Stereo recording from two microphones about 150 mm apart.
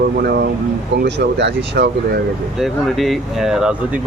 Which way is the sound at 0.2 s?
90° right.